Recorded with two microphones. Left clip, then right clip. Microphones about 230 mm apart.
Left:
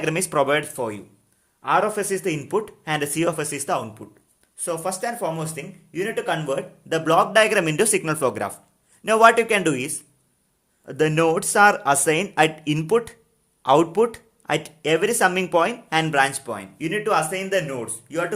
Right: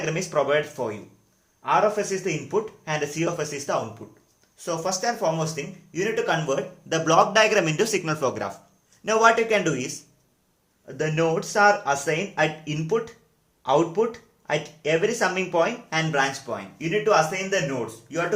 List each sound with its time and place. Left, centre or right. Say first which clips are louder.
0.0 s speech: left 3 dB; left
10.8 s speech: left 5 dB; left